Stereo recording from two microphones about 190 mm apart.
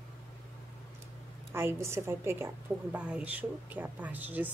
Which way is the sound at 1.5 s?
15° right (ahead or behind).